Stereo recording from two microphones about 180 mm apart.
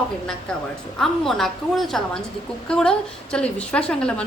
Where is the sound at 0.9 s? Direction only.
Centre (ahead or behind).